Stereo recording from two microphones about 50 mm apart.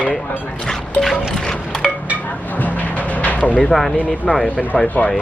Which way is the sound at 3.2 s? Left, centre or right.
Left.